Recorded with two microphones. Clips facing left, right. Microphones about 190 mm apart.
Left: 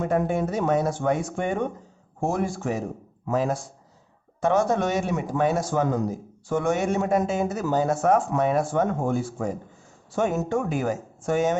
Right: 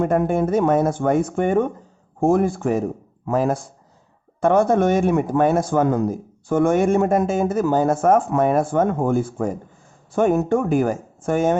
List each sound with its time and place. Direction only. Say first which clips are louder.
0.0 s a man's voice: right 5 dB; 55° right (ahead or behind)